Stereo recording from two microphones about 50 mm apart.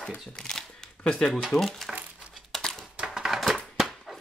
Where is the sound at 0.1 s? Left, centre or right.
Left.